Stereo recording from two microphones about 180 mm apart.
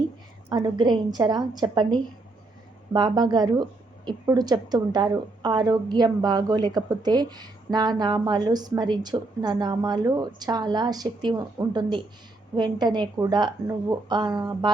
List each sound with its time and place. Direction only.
0.5 s a woman's voice: 25° right (ahead or behind)